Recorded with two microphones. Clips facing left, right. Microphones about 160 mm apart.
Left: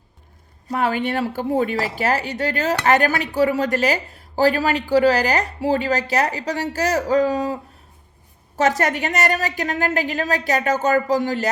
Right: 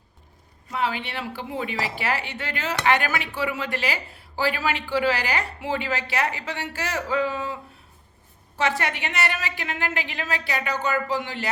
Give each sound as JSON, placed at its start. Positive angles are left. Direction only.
{"t": 0.7, "sound": "a woman's voice", "side_deg": 50}